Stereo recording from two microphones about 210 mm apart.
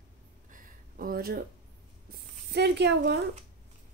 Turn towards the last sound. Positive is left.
turn(degrees=-55)  # may be behind; listen again after turning